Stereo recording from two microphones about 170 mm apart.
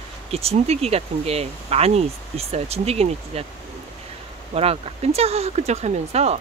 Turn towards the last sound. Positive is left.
turn(degrees=-40)  # may be behind; listen again after turning